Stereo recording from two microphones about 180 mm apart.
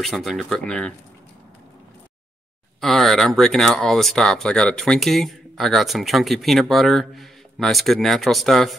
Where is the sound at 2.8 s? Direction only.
Centre (ahead or behind).